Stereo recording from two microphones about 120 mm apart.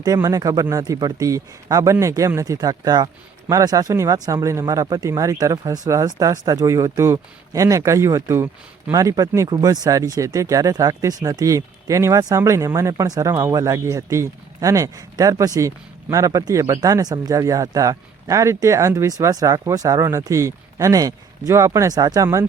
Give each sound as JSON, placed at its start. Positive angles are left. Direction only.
{"t": 0.0, "sound": "a man's voice", "side_deg": -30}